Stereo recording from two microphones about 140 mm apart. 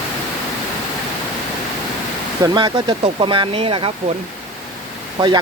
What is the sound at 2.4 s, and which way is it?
Speech, 30° right (ahead or behind).